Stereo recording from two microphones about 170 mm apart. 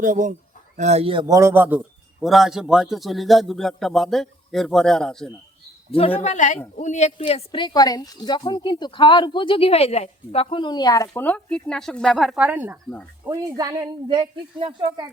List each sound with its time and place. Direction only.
0.0 s a man's voice: 50° right (ahead or behind); by 1.4 s 30° right (ahead or behind)
1.4 s a man's voice: 15° right (ahead or behind); by 5.3 s 5° left (ahead or behind)
5.9 s speech: 35° left (ahead or behind)
7.3 s a woman's voice: 30° left (ahead or behind); by 15.1 s 25° right (ahead or behind)